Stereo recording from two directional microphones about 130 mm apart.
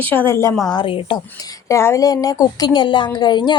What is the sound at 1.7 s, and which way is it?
A woman's voice, 20° left (ahead or behind).